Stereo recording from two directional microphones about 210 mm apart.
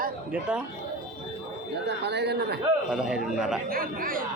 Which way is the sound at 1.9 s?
55° right (ahead or behind).